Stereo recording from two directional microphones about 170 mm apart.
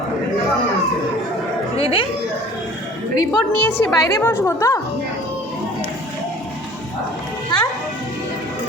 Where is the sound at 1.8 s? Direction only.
35° left (ahead or behind).